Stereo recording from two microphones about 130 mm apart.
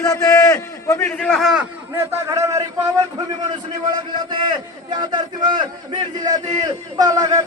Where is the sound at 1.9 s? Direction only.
20° right (ahead or behind).